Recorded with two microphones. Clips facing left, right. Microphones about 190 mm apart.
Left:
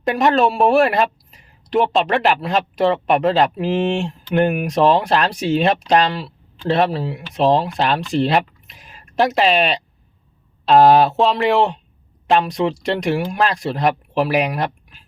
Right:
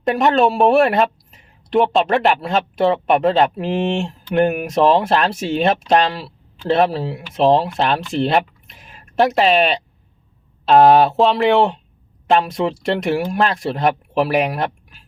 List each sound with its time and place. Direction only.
0.0 s speech: centre (ahead or behind)